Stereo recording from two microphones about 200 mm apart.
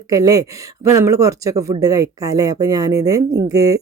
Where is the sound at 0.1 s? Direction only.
20° right (ahead or behind).